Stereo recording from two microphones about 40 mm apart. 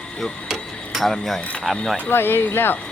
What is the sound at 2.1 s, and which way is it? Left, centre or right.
Speech, left.